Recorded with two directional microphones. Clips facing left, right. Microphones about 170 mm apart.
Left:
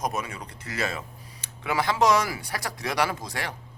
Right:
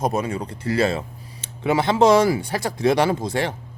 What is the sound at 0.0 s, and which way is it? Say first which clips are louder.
Speech: right 8 dB; 30° right (ahead or behind).